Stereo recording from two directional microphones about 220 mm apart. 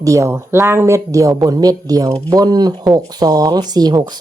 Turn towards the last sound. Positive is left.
turn(degrees=-15)  # may be behind; listen again after turning